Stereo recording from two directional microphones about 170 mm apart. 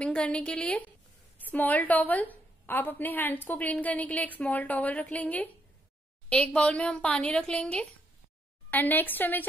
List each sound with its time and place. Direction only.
0.0 s a woman's voice: 5° left (ahead or behind)